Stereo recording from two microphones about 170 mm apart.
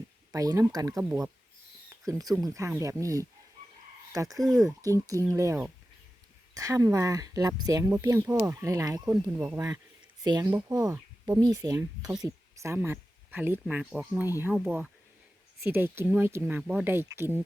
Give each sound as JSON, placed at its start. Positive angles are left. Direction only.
{"t": 0.3, "sound": "speech", "side_deg": -20}
{"t": 1.9, "sound": "a sound", "side_deg": -20}
{"t": 2.4, "sound": "speech", "side_deg": -20}